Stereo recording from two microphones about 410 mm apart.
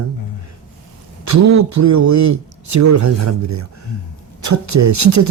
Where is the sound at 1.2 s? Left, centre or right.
Right.